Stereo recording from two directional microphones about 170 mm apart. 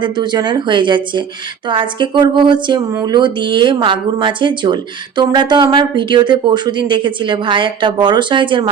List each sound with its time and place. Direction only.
0.0 s speech: 25° right (ahead or behind)